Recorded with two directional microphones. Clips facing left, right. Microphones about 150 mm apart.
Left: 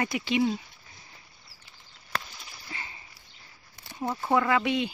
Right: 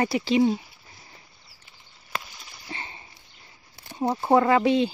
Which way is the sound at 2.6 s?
30° right (ahead or behind).